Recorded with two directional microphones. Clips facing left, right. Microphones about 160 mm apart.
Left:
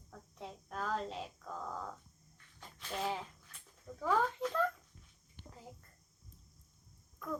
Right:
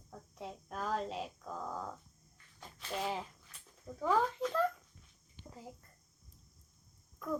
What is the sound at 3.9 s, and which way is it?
Speech, 25° right (ahead or behind).